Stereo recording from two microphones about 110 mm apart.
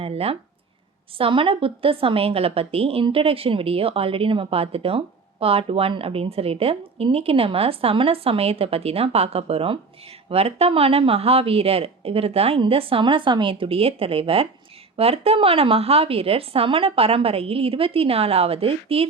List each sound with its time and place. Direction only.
0.0 s a woman's voice: 65° right (ahead or behind)